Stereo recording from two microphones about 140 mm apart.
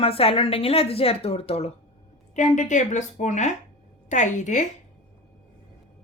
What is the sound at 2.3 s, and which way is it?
Speech, 60° left (ahead or behind).